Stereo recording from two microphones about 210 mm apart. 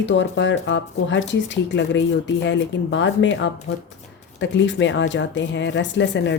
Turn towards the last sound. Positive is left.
turn(degrees=60)  # may be behind; listen again after turning